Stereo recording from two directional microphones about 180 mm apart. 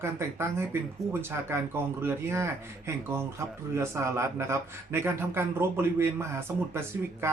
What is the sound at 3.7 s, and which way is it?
Speech, 15° right (ahead or behind).